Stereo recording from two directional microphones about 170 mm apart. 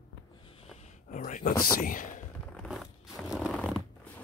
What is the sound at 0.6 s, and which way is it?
Speech, 40° left (ahead or behind).